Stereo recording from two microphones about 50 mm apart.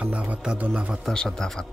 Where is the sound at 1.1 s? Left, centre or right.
Centre.